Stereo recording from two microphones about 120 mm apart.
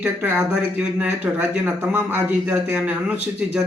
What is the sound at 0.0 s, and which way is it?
Speech, 15° right (ahead or behind).